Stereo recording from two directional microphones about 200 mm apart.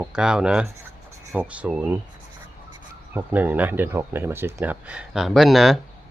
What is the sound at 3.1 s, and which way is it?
Speech, 10° right (ahead or behind).